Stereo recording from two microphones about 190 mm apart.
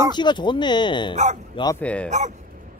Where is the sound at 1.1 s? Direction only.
35° right (ahead or behind).